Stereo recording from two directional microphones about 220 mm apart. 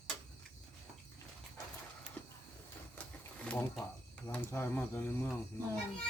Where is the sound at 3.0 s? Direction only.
5° left (ahead or behind).